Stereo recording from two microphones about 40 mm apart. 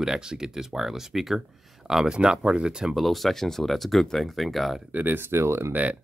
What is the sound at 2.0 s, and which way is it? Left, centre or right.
Speech, right.